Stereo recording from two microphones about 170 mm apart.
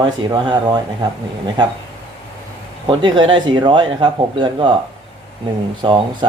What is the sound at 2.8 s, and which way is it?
A man's voice, 30° right (ahead or behind).